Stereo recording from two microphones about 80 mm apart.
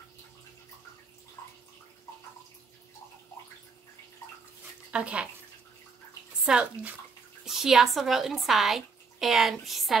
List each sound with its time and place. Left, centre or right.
4.9 s a child's voice: centre
6.4 s a child's voice: centre
7.4 s speech: centre